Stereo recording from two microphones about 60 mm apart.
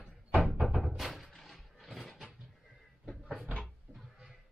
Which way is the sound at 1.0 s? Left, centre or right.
Centre.